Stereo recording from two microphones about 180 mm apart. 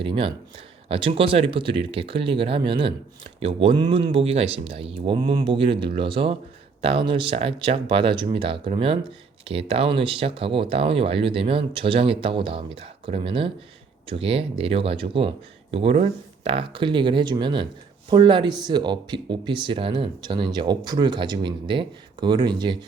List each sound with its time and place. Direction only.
0.0 s speech: 30° right (ahead or behind)